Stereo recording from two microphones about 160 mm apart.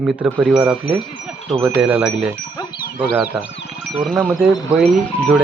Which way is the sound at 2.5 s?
25° left (ahead or behind).